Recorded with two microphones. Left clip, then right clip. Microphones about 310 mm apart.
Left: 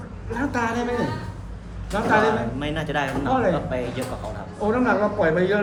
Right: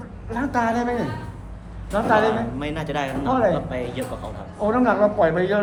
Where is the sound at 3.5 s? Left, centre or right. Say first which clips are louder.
Even; centre.